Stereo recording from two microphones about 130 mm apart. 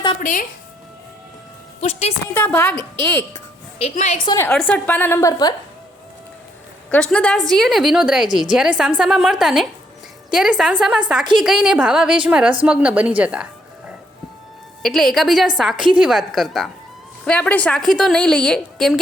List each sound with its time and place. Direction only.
0.2 s speech: 75° left (ahead or behind)
1.8 s a woman's voice: 55° left (ahead or behind)
2.3 s a woman's voice: 10° left (ahead or behind)
3.3 s music: 45° left (ahead or behind)
3.9 s a woman's voice: 60° left (ahead or behind)
4.3 s a woman's voice: 20° left (ahead or behind)
4.5 s a woman's voice: 10° left (ahead or behind)
6.9 s a woman's voice: 10° left (ahead or behind); by 13.9 s 10° right (ahead or behind)
14.8 s a woman's voice: centre (ahead or behind)